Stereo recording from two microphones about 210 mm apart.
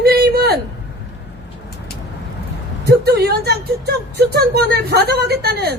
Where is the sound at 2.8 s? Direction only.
50° right (ahead or behind).